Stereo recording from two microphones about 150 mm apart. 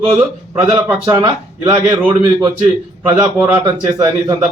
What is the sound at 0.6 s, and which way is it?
A man's voice, 15° right (ahead or behind).